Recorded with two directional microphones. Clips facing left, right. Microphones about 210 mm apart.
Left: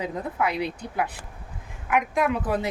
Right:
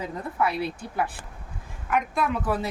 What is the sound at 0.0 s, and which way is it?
A woman's voice, 20° left (ahead or behind).